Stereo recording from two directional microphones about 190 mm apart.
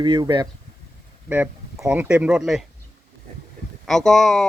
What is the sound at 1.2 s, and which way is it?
Speech, 10° right (ahead or behind).